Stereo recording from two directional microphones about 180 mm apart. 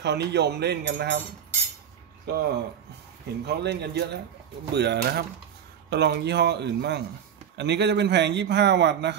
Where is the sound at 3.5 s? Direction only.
65° right (ahead or behind).